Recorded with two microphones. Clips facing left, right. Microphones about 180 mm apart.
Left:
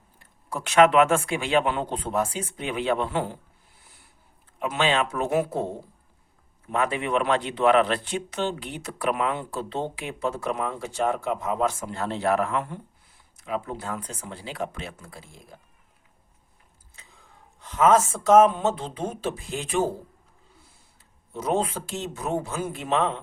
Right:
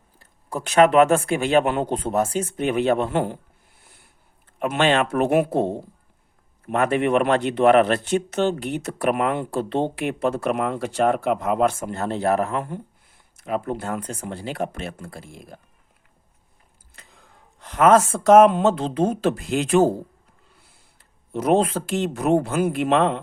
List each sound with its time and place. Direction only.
0.2 s speech: 35° right (ahead or behind)
4.6 s speech: 55° right (ahead or behind)
6.7 s speech: 55° right (ahead or behind)
11.9 s speech: 45° right (ahead or behind)
13.4 s speech: 55° right (ahead or behind)
17.7 s speech: 65° right (ahead or behind); by 19.9 s 85° right
21.3 s speech: 70° right (ahead or behind)